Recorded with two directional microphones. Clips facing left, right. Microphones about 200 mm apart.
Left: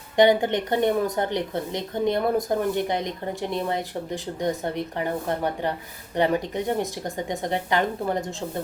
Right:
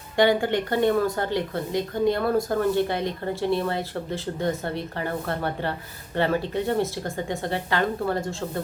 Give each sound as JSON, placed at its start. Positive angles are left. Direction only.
{"t": 0.2, "sound": "speech", "side_deg": 20}